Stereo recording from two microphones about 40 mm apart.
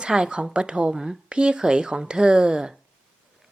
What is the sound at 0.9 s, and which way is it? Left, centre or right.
Speech, centre.